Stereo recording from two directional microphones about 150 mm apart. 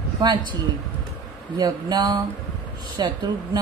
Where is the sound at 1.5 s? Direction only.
25° right (ahead or behind).